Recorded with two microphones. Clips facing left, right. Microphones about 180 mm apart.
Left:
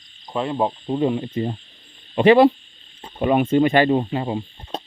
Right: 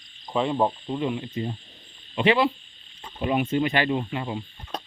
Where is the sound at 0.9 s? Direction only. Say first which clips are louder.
Left 6 dB; 35° left (ahead or behind).